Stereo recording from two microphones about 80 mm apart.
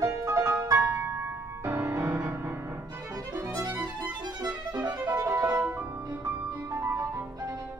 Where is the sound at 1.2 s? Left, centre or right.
Right.